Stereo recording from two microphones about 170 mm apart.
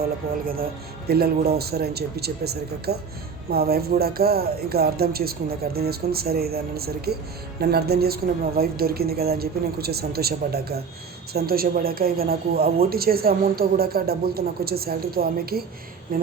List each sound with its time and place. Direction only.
0.4 s speech: 60° right (ahead or behind)